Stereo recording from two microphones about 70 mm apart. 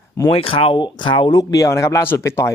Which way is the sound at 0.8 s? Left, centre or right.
Left.